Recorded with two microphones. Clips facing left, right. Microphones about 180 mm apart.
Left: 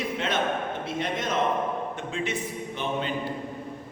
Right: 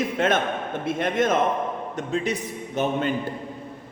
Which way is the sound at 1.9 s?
40° right (ahead or behind).